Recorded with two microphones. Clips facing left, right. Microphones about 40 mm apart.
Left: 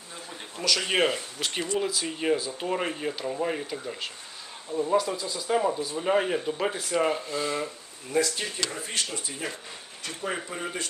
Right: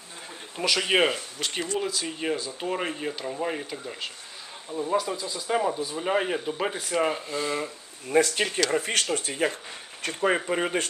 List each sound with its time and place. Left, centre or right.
0.5 s speech: right
1.1 s speech: centre
8.1 s speech: right
8.7 s speech: right
10.0 s speech: right